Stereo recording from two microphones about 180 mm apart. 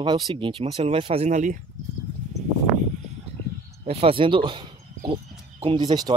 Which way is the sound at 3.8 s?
35° right (ahead or behind).